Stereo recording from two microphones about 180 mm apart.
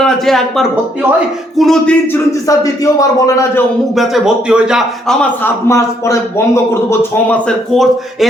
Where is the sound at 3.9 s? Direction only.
Centre (ahead or behind).